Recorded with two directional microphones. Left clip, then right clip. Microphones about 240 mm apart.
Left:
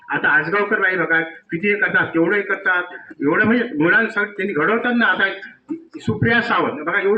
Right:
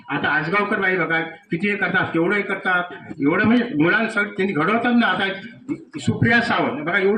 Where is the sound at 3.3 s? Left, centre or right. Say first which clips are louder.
Left 3 dB; right.